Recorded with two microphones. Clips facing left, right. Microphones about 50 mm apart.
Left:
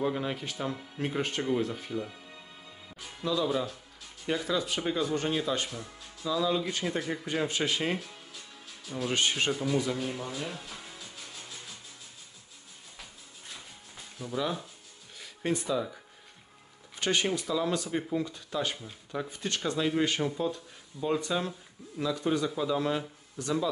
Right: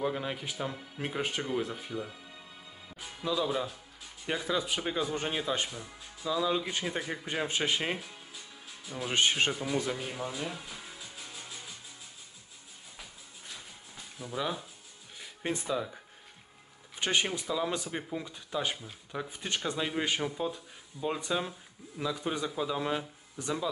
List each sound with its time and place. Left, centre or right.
0.0 s speech: centre
3.0 s speech: centre
7.2 s speech: right
9.6 s speech: centre
10.7 s music: centre
14.1 s speech: centre
15.1 s music: centre
16.9 s a sound: centre
17.4 s speech: centre
18.8 s speech: centre
19.2 s speech: centre